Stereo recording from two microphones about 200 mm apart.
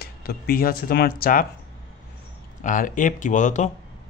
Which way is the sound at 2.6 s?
40° left (ahead or behind).